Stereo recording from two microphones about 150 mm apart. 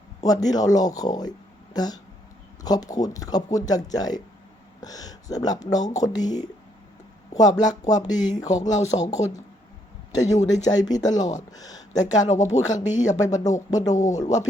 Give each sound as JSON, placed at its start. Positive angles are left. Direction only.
{"t": 0.2, "sound": "speech", "side_deg": 25}
{"t": 8.5, "sound": "speech", "side_deg": 55}
{"t": 10.2, "sound": "speech", "side_deg": 25}
{"t": 12.4, "sound": "speech", "side_deg": 55}
{"t": 13.2, "sound": "speech", "side_deg": 25}
{"t": 13.9, "sound": "speech", "side_deg": 55}